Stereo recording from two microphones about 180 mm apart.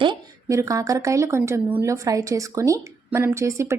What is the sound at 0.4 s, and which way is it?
A woman's voice, 15° right (ahead or behind).